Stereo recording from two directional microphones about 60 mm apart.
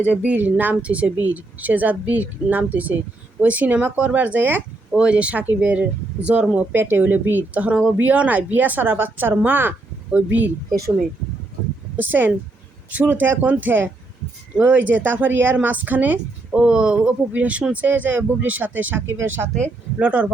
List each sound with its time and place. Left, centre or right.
0.2 s a woman's voice: right
4.9 s a woman's voice: centre
11.9 s a woman's voice: right
16.6 s a woman's voice: centre
19.0 s speech: right
20.0 s a woman's voice: right